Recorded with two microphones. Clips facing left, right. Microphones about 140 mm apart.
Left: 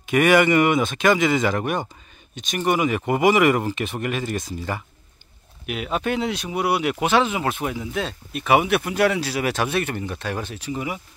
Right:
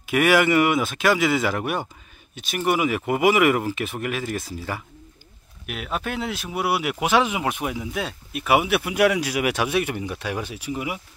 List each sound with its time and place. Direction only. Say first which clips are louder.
0.0 s speech: left 2 dB; 5° right (ahead or behind)